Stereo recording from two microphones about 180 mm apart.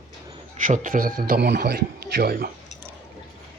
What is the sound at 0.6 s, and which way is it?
A man's voice, 45° right (ahead or behind).